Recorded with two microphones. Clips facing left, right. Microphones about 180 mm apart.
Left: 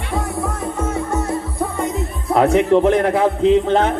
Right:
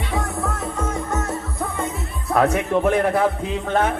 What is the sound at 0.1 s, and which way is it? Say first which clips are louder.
Music: left 4 dB; 10° left (ahead or behind).